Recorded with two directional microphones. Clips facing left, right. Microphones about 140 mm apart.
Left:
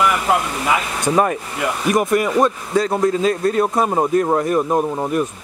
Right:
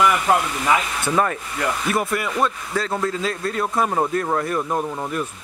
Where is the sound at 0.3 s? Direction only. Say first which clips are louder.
Left 1 dB; 10° left (ahead or behind).